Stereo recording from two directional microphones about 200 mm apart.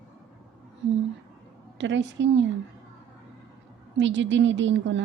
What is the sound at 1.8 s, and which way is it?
Speech, 65° right (ahead or behind).